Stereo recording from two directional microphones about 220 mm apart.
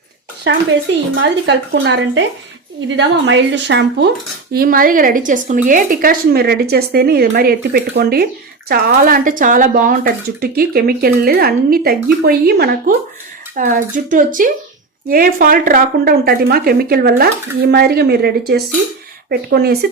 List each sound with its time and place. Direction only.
1.2 s a woman's voice: 50° right (ahead or behind)
4.5 s a woman's voice: 40° right (ahead or behind)